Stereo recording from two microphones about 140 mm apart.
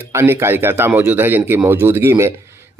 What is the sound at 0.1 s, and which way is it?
Speech, 20° right (ahead or behind).